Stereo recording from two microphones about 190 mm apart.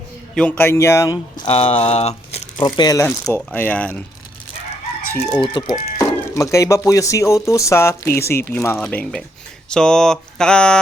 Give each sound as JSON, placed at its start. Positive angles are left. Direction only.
{"t": 0.3, "sound": "speech", "side_deg": 10}
{"t": 1.5, "sound": "speech", "side_deg": 30}
{"t": 5.1, "sound": "speech", "side_deg": 10}
{"t": 5.5, "sound": "speech", "side_deg": 20}
{"t": 9.6, "sound": "a sound", "side_deg": 5}